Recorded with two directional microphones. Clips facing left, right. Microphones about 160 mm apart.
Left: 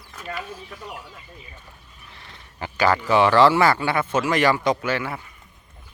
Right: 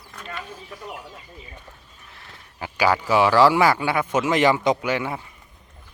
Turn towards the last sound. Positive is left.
turn(degrees=-15)  # may be behind; listen again after turning